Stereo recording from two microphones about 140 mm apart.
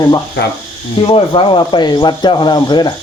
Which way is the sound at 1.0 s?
35° left (ahead or behind).